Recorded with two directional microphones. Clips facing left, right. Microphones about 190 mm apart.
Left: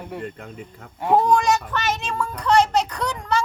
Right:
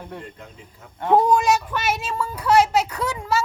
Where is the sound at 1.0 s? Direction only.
5° left (ahead or behind).